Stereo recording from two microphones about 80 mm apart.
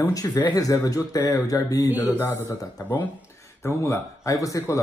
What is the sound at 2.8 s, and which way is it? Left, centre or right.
Speech, left.